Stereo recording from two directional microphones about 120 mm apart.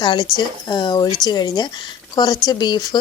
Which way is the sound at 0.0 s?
40° left (ahead or behind).